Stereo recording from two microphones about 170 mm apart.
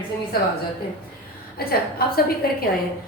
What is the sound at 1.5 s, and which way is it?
A woman's voice, 65° left (ahead or behind).